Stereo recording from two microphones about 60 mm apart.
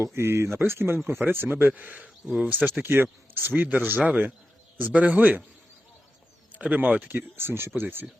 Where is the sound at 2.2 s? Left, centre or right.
Centre.